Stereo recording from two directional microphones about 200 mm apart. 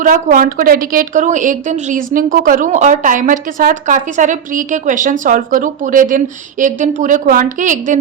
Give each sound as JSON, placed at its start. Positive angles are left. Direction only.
{"t": 0.0, "sound": "a woman's voice", "side_deg": -40}